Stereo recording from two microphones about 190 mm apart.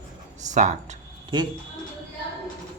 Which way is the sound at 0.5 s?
40° right (ahead or behind).